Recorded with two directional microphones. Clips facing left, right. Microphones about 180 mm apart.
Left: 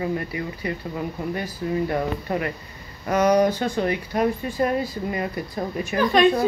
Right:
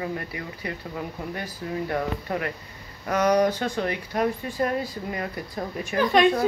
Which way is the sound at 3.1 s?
5° left (ahead or behind).